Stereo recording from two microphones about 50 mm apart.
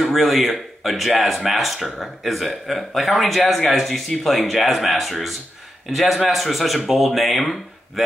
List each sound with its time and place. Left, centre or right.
0.0 s speech: centre